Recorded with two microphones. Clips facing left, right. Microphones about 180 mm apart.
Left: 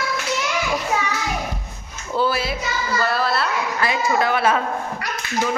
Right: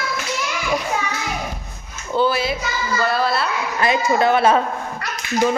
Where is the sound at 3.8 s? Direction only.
25° right (ahead or behind).